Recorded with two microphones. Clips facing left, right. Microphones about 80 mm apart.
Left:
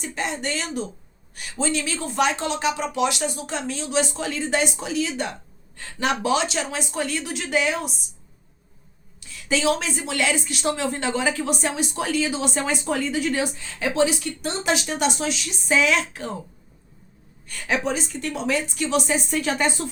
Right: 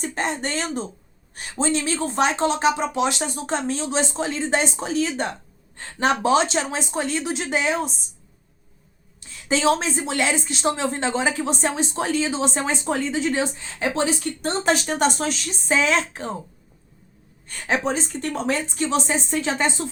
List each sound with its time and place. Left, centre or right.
0.0 s a woman's voice: right
9.2 s a woman's voice: right
17.4 s speech: right